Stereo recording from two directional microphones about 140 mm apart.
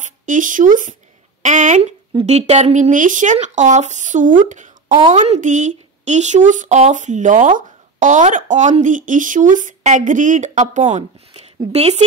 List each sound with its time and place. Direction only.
0.0 s speech: 70° right (ahead or behind); by 12.0 s 50° right (ahead or behind)